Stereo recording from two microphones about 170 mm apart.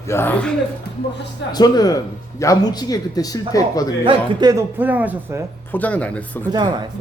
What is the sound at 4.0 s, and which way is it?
Speech, 30° right (ahead or behind).